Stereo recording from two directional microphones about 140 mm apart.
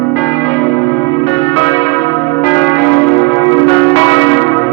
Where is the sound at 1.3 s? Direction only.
35° left (ahead or behind).